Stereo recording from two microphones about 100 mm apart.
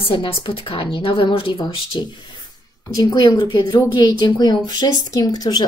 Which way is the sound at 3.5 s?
45° left (ahead or behind).